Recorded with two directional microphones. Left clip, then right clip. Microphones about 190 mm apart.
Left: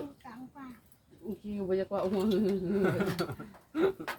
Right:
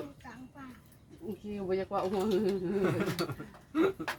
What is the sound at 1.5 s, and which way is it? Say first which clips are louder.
Speech: left 1 dB; 20° right (ahead or behind).